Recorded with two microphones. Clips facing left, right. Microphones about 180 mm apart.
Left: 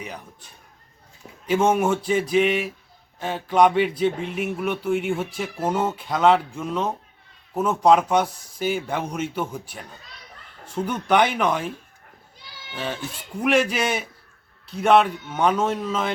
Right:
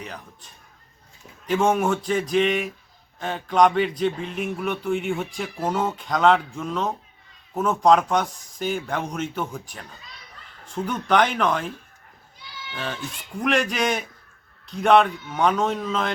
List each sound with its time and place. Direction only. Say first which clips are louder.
1.5 s speech: left 1 dB; 5° left (ahead or behind)
12.7 s a man's voice: left 2 dB; 5° left (ahead or behind)